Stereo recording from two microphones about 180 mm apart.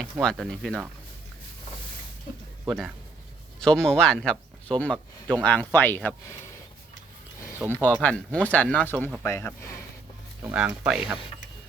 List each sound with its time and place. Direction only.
0.0 s speech: centre (ahead or behind)
2.6 s speech: centre (ahead or behind)
7.6 s speech: 20° right (ahead or behind)
8.0 s speech: 5° left (ahead or behind)
10.4 s speech: 5° right (ahead or behind)